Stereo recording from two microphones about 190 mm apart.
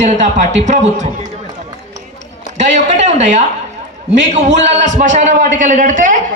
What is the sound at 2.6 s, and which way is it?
Speech, 40° right (ahead or behind).